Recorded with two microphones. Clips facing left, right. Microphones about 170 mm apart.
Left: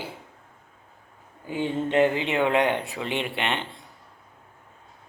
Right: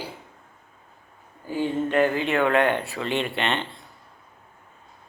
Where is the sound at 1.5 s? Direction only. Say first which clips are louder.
Even; 20° left (ahead or behind).